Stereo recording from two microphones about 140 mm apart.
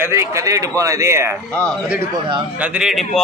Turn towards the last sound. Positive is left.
turn(degrees=0)  # may be behind; listen again after turning